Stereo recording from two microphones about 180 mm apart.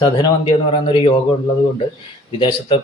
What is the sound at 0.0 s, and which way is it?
Speech, 25° left (ahead or behind).